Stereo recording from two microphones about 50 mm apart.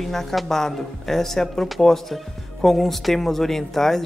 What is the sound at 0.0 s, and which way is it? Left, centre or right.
A woman's voice, centre.